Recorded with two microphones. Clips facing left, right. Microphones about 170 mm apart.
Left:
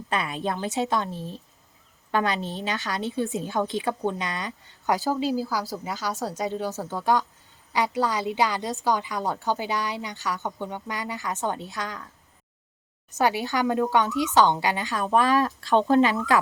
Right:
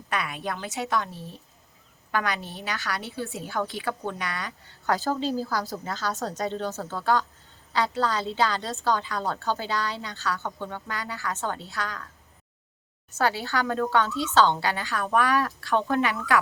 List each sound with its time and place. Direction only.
0.1 s a woman's voice: 25° left (ahead or behind)
13.1 s a woman's voice: 15° left (ahead or behind)